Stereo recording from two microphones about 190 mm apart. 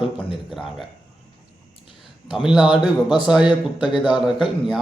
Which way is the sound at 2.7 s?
25° left (ahead or behind).